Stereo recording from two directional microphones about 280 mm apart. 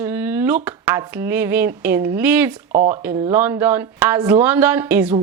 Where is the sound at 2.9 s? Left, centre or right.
Centre.